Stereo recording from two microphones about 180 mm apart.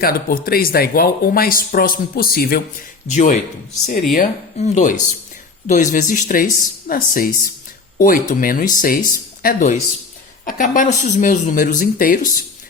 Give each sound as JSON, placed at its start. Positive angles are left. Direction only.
{"t": 0.0, "sound": "speech", "side_deg": 55}
{"t": 3.1, "sound": "speech", "side_deg": 40}